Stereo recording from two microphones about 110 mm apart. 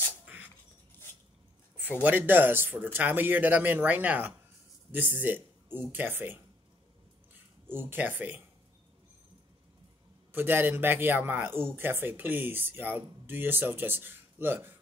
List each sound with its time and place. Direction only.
0.2 s a sound: 15° right (ahead or behind)
2.0 s speech: 15° right (ahead or behind)
7.6 s speech: 20° right (ahead or behind)
10.3 s speech: 20° right (ahead or behind)